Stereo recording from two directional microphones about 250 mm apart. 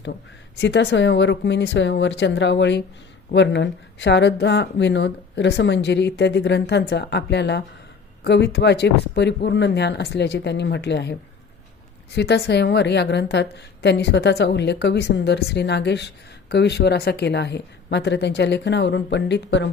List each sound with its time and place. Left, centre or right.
0.0 s speech: left